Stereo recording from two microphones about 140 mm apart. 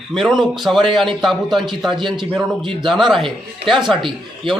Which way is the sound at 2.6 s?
35° right (ahead or behind).